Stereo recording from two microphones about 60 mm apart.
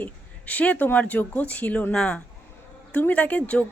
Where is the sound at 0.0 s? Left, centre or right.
Left.